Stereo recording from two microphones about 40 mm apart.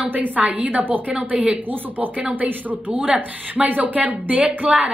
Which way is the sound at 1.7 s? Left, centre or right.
Right.